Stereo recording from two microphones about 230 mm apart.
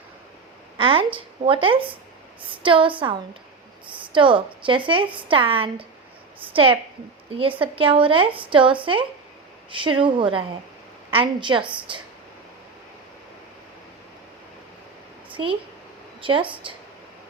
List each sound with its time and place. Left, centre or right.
0.8 s a woman's voice: right
15.3 s a sound: right
16.2 s a woman's voice: right